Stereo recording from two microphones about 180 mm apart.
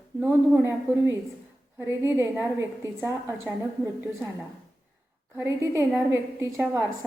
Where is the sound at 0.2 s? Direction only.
10° right (ahead or behind).